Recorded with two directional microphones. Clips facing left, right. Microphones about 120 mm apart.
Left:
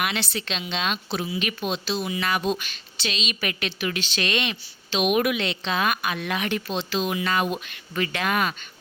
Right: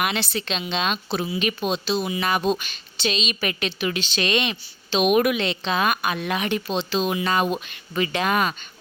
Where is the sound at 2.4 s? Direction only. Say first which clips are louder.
Right 3 dB; 35° right (ahead or behind).